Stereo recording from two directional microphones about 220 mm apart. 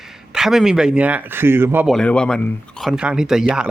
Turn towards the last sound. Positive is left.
turn(degrees=-5)  # may be behind; listen again after turning